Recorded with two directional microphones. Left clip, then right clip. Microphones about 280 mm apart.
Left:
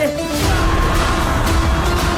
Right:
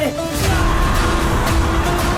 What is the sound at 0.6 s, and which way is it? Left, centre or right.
Music, centre.